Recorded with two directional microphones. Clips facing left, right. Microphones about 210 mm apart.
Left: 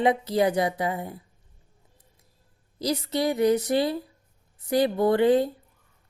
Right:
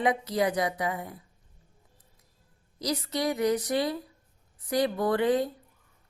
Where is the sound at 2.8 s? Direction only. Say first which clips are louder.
Left 4 dB; 30° left (ahead or behind).